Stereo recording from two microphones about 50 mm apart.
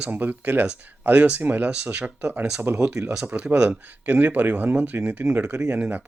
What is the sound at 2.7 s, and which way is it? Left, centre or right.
Speech, right.